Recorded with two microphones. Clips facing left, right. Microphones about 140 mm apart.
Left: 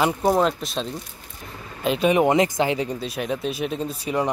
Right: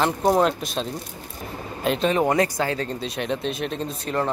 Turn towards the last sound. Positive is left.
turn(degrees=5)  # may be behind; listen again after turning